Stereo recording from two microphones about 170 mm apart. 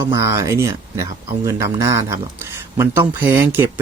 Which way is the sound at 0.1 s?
20° right (ahead or behind).